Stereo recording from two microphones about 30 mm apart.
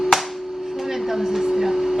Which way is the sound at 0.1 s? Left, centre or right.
Centre.